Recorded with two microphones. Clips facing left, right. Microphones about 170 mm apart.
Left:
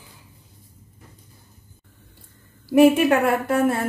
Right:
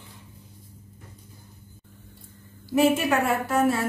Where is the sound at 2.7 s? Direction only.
60° left (ahead or behind).